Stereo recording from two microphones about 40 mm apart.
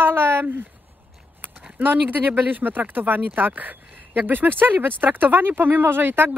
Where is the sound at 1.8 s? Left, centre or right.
Right.